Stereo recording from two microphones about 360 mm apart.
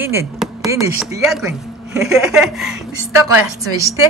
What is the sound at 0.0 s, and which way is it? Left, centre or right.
A woman's voice, centre.